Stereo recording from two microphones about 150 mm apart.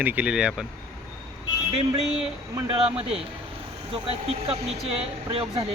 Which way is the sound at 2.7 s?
40° right (ahead or behind).